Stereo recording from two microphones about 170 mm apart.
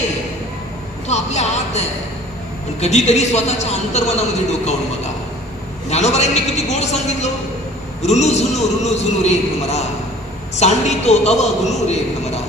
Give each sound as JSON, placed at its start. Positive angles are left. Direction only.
{"t": 1.0, "sound": "a man's voice", "side_deg": 40}